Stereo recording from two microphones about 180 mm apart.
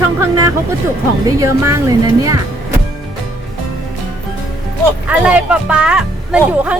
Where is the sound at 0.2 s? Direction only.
15° right (ahead or behind).